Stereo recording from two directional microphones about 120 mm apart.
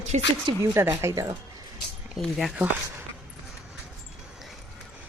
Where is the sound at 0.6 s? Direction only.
25° right (ahead or behind).